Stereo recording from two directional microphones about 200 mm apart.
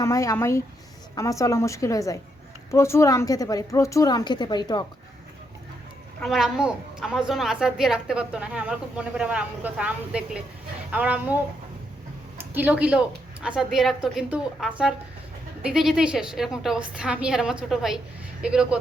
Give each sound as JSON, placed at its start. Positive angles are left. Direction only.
{"t": 0.0, "sound": "a woman's voice", "side_deg": 15}
{"t": 6.1, "sound": "a woman's voice", "side_deg": 0}
{"t": 12.4, "sound": "a woman's voice", "side_deg": -10}